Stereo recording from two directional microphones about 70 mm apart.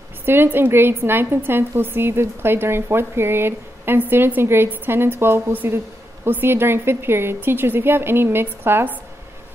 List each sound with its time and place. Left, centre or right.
0.2 s a woman's voice: right